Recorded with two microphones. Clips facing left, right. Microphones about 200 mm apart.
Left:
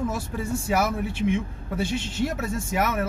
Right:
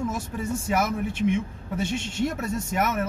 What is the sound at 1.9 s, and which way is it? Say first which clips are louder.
Speech: even; 5° left (ahead or behind).